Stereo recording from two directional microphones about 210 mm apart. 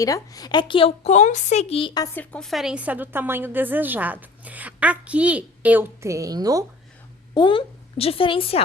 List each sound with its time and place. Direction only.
0.0 s speech: 15° left (ahead or behind)
2.1 s a woman's voice: 5° left (ahead or behind); by 6.7 s 15° right (ahead or behind)
7.3 s speech: 25° left (ahead or behind)